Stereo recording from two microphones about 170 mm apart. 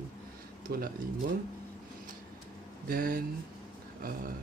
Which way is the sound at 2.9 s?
60° right (ahead or behind).